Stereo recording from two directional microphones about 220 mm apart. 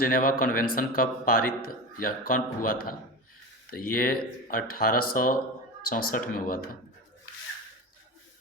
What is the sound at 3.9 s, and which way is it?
Speech, 40° left (ahead or behind).